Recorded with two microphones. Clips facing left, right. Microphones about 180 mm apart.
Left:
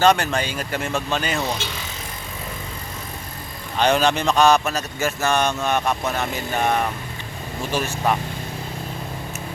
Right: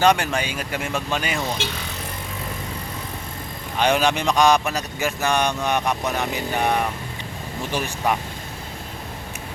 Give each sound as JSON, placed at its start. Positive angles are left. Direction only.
{"t": 0.0, "sound": "speech", "side_deg": -10}
{"t": 3.8, "sound": "speech", "side_deg": -10}